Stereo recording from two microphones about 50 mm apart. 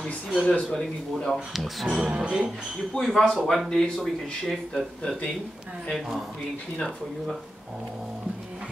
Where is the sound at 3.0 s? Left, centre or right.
Centre.